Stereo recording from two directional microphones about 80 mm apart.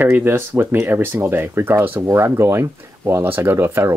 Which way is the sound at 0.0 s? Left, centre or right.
Right.